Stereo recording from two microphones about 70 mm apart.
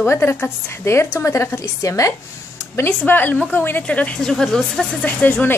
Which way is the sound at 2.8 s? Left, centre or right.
Left.